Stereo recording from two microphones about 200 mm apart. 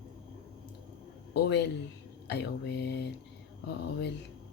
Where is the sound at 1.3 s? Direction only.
60° left (ahead or behind).